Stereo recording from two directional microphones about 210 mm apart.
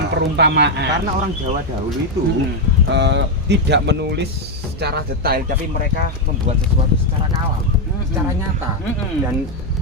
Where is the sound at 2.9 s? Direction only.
55° right (ahead or behind).